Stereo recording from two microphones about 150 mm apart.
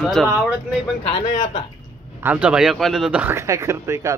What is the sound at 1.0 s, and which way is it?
Speech, 50° left (ahead or behind).